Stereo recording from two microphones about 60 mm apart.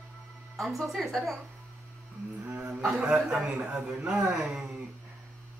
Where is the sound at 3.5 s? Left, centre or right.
Right.